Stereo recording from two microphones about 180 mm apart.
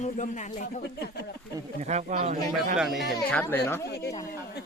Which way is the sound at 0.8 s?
65° left (ahead or behind).